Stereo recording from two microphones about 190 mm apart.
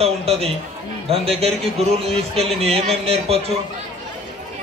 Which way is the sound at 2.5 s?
30° right (ahead or behind).